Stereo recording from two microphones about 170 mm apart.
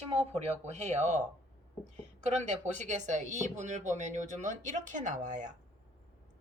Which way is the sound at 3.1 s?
45° right (ahead or behind).